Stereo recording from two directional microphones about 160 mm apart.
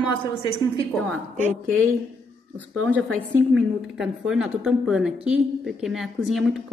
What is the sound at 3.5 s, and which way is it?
A woman's voice, centre (ahead or behind).